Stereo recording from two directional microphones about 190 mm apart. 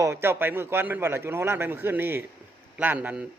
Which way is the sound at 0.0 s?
15° right (ahead or behind).